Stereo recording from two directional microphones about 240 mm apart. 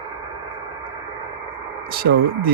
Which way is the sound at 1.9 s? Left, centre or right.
Right.